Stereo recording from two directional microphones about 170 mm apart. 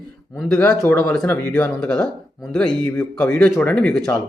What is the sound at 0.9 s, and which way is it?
Speech, 5° left (ahead or behind).